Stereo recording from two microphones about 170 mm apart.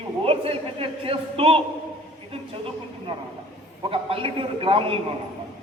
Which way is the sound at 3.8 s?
30° right (ahead or behind).